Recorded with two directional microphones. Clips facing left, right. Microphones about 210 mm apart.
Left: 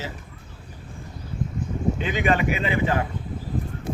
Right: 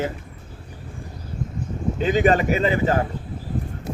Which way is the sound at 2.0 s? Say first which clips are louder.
Right 7 dB; 40° right (ahead or behind).